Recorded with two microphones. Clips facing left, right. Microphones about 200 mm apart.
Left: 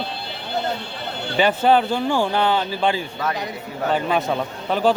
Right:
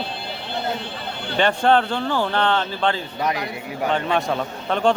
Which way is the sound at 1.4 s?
5° left (ahead or behind).